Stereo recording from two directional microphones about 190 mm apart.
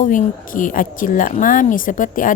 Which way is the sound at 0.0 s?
45° left (ahead or behind).